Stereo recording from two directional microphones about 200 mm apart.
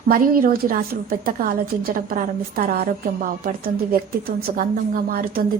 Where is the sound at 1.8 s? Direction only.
45° right (ahead or behind).